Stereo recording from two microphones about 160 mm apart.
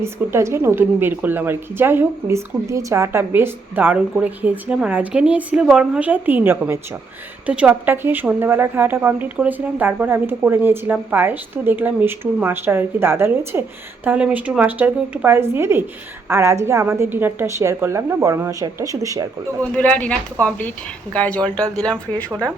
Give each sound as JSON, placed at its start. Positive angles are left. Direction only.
{"t": 0.0, "sound": "a woman's voice", "side_deg": -15}
{"t": 19.7, "sound": "speech", "side_deg": 10}
{"t": 22.3, "sound": "a woman's voice", "side_deg": -15}